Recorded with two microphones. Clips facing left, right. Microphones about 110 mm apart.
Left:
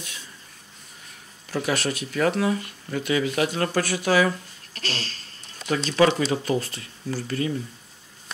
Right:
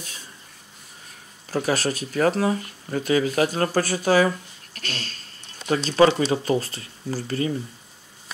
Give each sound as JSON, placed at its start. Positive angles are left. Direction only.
{"t": 1.5, "sound": "speech", "side_deg": -40}
{"t": 4.7, "sound": "a sound", "side_deg": 30}
{"t": 5.9, "sound": "speech", "side_deg": -30}